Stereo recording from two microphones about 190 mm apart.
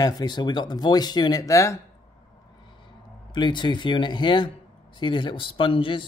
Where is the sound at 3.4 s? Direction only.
25° left (ahead or behind).